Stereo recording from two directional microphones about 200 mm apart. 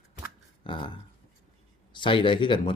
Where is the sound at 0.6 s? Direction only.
25° left (ahead or behind).